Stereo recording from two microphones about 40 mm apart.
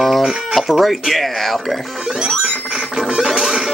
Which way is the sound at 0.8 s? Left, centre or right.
Centre.